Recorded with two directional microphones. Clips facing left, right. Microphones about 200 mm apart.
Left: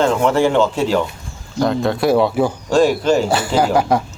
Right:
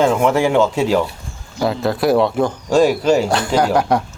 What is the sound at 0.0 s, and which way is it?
Speech, 10° right (ahead or behind).